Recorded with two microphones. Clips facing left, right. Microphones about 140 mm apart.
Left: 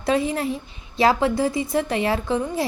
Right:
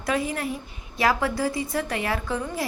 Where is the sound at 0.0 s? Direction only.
25° left (ahead or behind).